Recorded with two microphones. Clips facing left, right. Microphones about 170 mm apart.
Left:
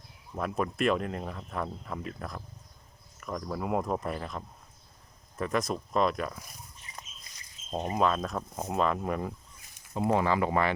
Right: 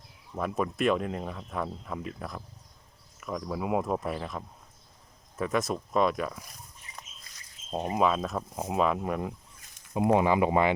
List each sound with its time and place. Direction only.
0.3 s speech: centre (ahead or behind)
7.7 s speech: 10° right (ahead or behind)
9.9 s speech: 15° right (ahead or behind)